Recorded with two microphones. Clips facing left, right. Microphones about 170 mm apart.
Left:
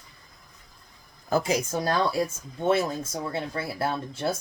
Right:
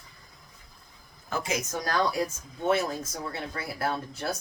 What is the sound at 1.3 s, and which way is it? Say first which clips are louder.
Speech: left 6 dB; 35° left (ahead or behind).